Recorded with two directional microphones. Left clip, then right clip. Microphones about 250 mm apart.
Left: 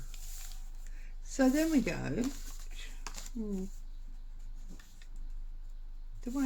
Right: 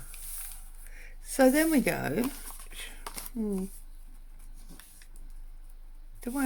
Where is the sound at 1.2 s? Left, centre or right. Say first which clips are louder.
Right 6 dB; right.